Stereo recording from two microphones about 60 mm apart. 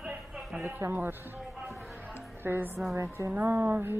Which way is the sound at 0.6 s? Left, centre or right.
Right.